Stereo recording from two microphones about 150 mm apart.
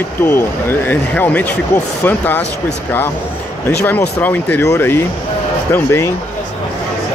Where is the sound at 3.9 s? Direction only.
10° left (ahead or behind).